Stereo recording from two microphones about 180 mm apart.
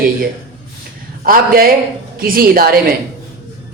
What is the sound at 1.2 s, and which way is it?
A man's voice, 55° right (ahead or behind).